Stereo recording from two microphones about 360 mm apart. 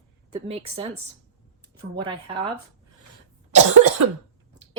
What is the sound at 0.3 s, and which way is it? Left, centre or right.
Speech, centre.